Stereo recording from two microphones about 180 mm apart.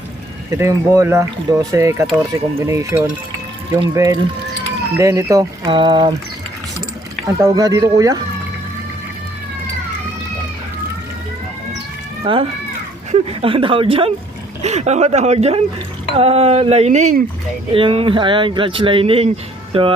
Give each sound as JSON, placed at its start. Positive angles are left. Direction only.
{"t": 0.5, "sound": "speech", "side_deg": -15}
{"t": 7.3, "sound": "speech", "side_deg": -15}
{"t": 12.2, "sound": "speech", "side_deg": -30}
{"t": 17.7, "sound": "speech", "side_deg": -30}